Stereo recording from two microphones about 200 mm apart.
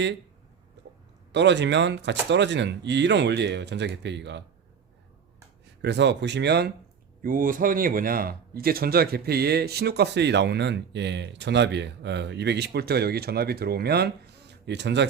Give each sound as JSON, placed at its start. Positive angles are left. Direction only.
{"t": 0.8, "sound": "a sound", "side_deg": -60}
{"t": 1.3, "sound": "speech", "side_deg": -60}
{"t": 5.8, "sound": "speech", "side_deg": -60}
{"t": 7.2, "sound": "speech", "side_deg": -45}